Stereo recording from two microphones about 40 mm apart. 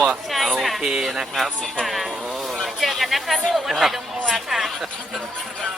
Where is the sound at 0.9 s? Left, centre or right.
Centre.